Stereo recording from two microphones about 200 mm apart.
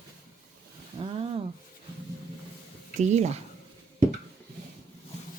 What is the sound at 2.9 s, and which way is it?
Speech, 35° right (ahead or behind).